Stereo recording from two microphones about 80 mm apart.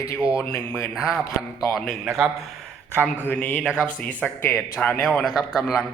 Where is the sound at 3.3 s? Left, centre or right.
Centre.